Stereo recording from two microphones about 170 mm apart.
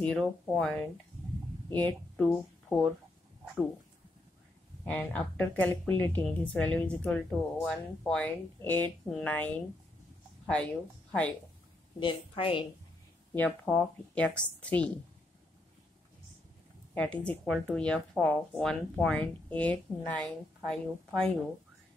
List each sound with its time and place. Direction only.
0.0 s speech: 5° left (ahead or behind)
4.8 s a woman's voice: 10° left (ahead or behind)
12.0 s a woman's voice: 30° left (ahead or behind)
13.3 s speech: 10° left (ahead or behind)
16.9 s speech: 5° left (ahead or behind)